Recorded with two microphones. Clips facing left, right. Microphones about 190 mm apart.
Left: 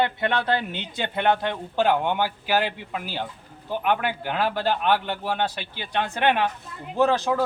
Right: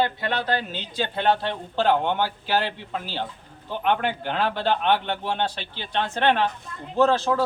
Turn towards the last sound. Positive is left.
turn(degrees=15)  # may be behind; listen again after turning